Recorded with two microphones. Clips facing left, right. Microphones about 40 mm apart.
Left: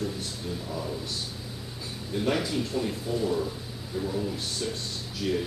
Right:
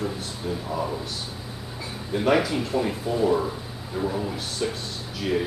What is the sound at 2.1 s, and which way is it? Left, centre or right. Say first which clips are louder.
A man's voice: right 6 dB; right.